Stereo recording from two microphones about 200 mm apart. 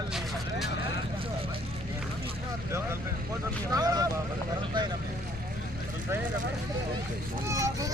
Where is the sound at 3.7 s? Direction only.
20° right (ahead or behind).